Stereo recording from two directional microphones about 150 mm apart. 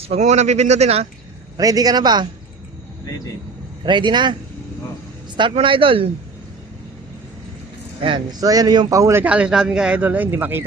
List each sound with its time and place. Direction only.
0.1 s speech: 50° right (ahead or behind)
1.5 s a man's voice: 25° right (ahead or behind)
3.8 s speech: 30° right (ahead or behind)
5.4 s speech: 35° right (ahead or behind)
8.0 s a man's voice: 30° right (ahead or behind); by 10.6 s 10° right (ahead or behind)